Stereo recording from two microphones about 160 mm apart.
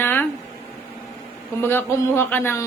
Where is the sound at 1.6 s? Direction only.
15° left (ahead or behind).